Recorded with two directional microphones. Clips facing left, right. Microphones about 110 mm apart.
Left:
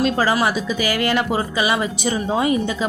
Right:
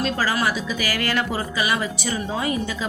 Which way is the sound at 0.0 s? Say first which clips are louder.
Left 5 dB; 20° left (ahead or behind).